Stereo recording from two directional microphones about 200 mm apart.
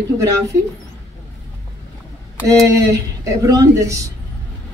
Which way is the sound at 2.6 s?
15° right (ahead or behind).